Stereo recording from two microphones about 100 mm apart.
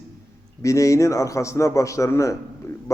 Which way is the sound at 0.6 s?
30° left (ahead or behind).